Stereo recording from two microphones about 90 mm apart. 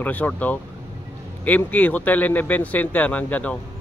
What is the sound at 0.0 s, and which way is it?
A man's voice, 20° left (ahead or behind).